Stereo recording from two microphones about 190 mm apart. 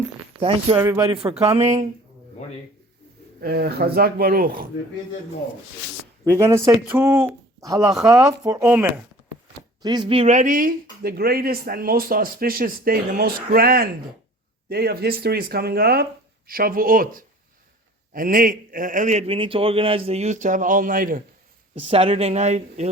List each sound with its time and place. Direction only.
0.3 s speech: 30° right (ahead or behind)
0.8 s a sound: 15° right (ahead or behind)
1.1 s a man's voice: 30° right (ahead or behind)
3.4 s speech: 55° right (ahead or behind)
6.3 s a sound: 15° right (ahead or behind)
7.3 s speech: 15° right (ahead or behind)
8.6 s a sound: 5° right (ahead or behind)
9.8 s a man's voice: 25° right (ahead or behind); by 21.2 s 45° right (ahead or behind)
21.8 s a man's voice: 30° right (ahead or behind)